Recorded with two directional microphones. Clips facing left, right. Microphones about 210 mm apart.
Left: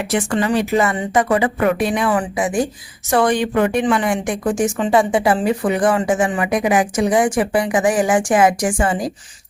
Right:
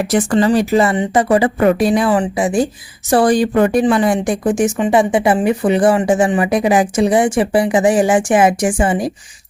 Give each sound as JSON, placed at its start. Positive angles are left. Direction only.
{"t": 0.0, "sound": "speech", "side_deg": -40}
{"t": 4.4, "sound": "speech", "side_deg": -20}